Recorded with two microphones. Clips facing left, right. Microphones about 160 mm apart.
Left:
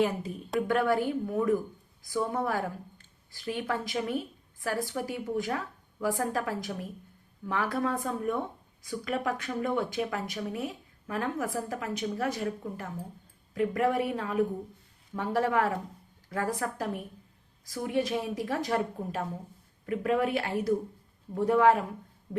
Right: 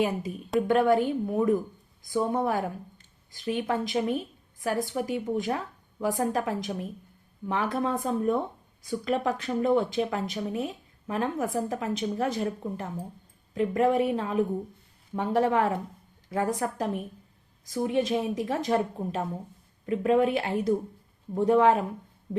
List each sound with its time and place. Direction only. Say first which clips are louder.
0.0 s speech: right 1 dB; 15° right (ahead or behind)